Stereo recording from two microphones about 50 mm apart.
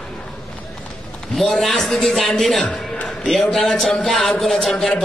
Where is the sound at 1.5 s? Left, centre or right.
Centre.